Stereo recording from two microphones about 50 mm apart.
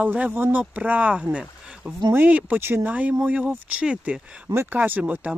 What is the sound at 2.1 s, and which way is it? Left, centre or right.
Speech, right.